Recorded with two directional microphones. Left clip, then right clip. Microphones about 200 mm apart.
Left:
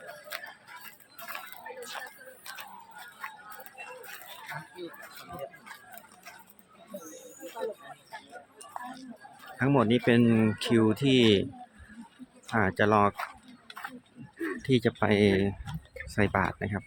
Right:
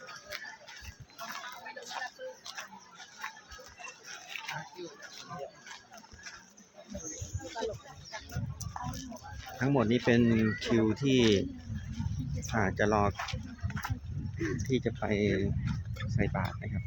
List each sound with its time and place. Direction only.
0.3 s a sound: 35° left (ahead or behind)
9.6 s speech: 15° left (ahead or behind)
12.5 s speech: 10° left (ahead or behind)
14.7 s speech: 20° left (ahead or behind)